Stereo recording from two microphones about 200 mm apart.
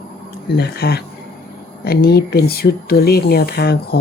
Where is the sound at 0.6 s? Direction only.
50° left (ahead or behind).